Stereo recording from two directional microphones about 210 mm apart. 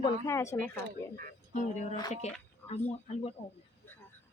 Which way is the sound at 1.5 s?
35° left (ahead or behind).